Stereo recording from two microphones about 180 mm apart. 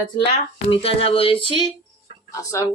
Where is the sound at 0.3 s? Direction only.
30° left (ahead or behind).